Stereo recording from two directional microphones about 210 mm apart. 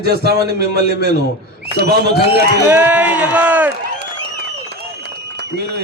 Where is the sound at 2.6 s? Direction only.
10° right (ahead or behind).